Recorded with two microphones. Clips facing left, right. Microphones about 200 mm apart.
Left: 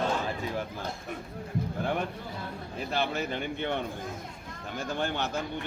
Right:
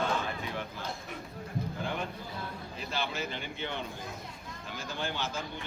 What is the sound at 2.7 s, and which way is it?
Speech, 55° left (ahead or behind).